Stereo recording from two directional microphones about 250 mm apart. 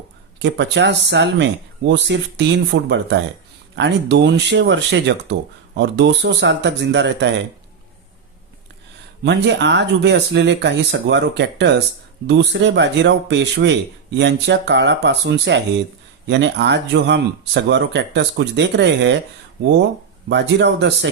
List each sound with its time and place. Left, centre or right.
0.3 s speech: right
9.2 s speech: right
20.3 s speech: right